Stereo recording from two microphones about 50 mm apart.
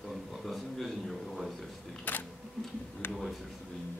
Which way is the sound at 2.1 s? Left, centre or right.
Left.